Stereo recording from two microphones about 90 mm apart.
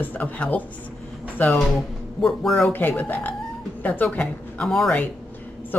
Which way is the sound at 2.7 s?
20° left (ahead or behind).